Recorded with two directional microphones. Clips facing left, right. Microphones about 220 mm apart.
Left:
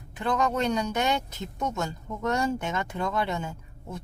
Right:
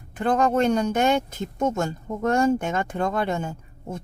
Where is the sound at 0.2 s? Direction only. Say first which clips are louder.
Right 6 dB; 50° right (ahead or behind).